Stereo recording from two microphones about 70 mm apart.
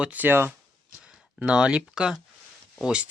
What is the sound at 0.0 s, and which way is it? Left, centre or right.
Speech, right.